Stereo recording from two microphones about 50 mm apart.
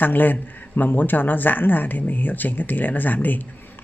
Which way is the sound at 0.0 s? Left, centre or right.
Left.